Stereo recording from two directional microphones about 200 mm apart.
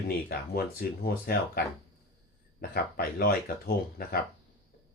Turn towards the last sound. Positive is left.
turn(degrees=50)  # may be behind; listen again after turning